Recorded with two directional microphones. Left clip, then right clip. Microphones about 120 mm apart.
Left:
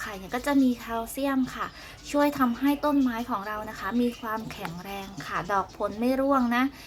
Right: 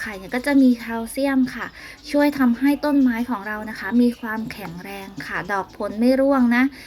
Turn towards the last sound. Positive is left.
turn(degrees=-10)  # may be behind; listen again after turning